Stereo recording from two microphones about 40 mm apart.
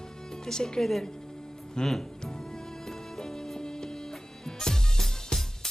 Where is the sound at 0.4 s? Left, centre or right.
Centre.